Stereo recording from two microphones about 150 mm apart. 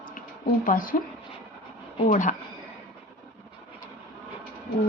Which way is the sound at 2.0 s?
60° left (ahead or behind).